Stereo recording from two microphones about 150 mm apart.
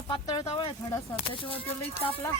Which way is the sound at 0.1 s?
25° left (ahead or behind).